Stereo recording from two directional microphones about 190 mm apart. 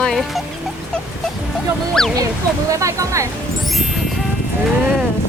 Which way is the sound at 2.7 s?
15° right (ahead or behind).